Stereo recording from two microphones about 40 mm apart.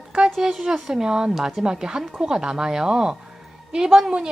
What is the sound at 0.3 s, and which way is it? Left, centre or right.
Speech, centre.